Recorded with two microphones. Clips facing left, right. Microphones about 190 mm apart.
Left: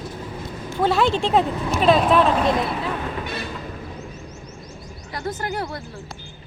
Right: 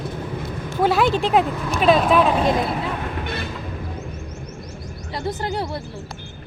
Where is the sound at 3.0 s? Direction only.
60° right (ahead or behind).